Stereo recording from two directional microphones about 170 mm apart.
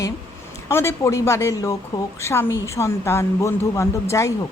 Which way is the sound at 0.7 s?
15° left (ahead or behind).